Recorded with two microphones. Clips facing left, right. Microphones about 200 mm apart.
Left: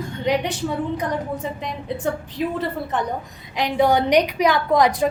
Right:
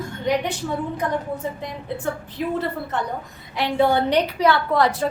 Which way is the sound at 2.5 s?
15° left (ahead or behind).